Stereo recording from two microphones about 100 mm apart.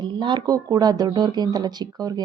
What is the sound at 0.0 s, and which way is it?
Speech, 50° right (ahead or behind).